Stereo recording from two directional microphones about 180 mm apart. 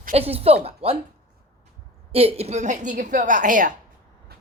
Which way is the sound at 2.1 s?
35° right (ahead or behind).